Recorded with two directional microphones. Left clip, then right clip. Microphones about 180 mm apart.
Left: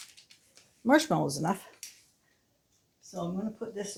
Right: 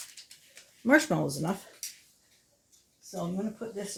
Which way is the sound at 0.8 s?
5° right (ahead or behind).